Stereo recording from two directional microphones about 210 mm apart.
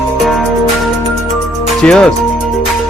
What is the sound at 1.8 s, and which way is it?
Speech, 5° left (ahead or behind).